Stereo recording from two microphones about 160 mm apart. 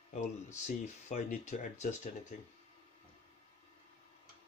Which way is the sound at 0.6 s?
50° left (ahead or behind).